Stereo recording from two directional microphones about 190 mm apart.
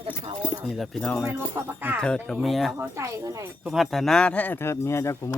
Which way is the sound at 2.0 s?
5° left (ahead or behind).